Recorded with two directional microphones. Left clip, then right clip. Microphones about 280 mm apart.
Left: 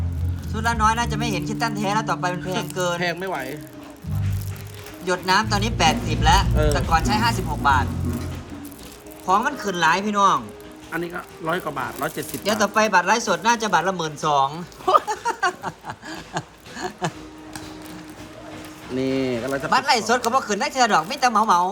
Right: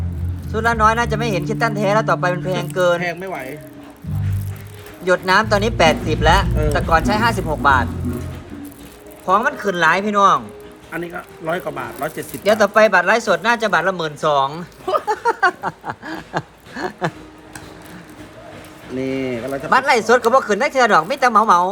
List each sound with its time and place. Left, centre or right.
0.5 s speech: centre
5.0 s speech: centre
9.2 s speech: centre
15.0 s a sound: centre
19.3 s speech: centre